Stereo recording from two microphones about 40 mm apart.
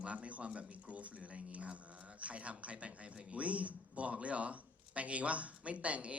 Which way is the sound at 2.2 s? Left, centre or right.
Right.